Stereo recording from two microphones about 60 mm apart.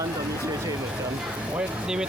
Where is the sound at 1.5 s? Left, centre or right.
Centre.